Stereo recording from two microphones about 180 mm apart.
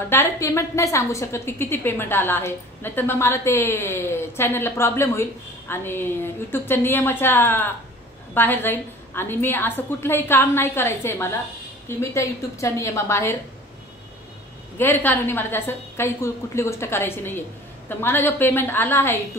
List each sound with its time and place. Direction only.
0.1 s a woman's voice: 15° left (ahead or behind)
14.8 s a woman's voice: 10° left (ahead or behind)